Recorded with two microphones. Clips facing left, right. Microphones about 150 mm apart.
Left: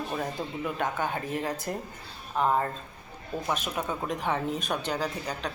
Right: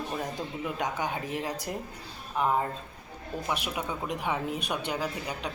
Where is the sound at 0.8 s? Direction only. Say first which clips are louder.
Left 1 dB; 15° right (ahead or behind).